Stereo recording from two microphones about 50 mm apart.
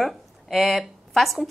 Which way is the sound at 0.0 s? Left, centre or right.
Centre.